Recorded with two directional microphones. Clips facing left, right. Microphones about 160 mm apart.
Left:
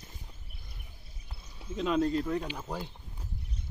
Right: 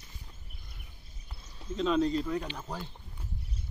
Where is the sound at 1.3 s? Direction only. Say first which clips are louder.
Right 2 dB; 10° left (ahead or behind).